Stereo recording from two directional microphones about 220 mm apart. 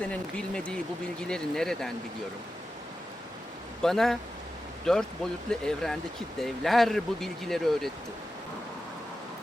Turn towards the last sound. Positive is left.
turn(degrees=0)  # may be behind; listen again after turning